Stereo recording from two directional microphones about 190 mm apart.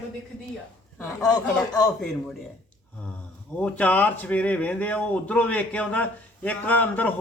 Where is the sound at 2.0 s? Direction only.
5° left (ahead or behind).